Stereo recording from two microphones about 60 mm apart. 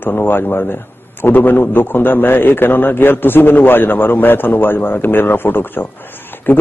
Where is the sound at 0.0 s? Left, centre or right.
Left.